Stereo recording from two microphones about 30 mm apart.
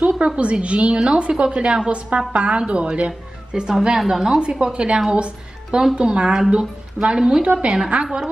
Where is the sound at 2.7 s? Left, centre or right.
Right.